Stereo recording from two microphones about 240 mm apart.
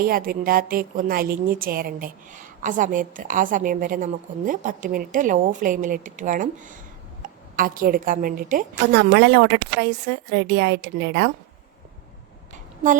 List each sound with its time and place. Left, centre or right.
0.0 s a woman's voice: right